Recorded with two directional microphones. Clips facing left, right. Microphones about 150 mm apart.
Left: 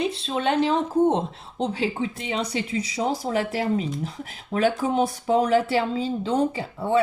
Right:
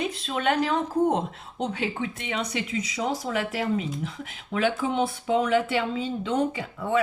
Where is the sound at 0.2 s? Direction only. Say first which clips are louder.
Even; 30° left (ahead or behind).